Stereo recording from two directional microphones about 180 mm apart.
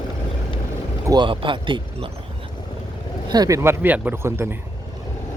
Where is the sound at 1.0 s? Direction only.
25° right (ahead or behind).